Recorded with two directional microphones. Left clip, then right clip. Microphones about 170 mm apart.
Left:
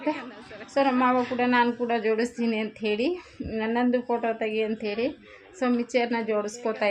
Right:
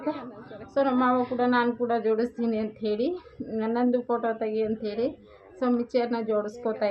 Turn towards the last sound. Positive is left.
turn(degrees=20)  # may be behind; listen again after turning